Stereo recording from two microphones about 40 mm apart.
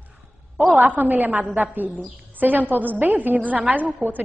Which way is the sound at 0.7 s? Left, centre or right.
Right.